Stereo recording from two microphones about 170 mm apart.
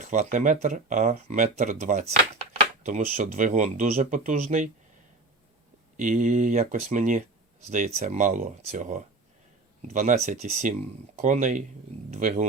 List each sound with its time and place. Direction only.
0.0 s speech: 50° right (ahead or behind)
6.0 s speech: 50° right (ahead or behind)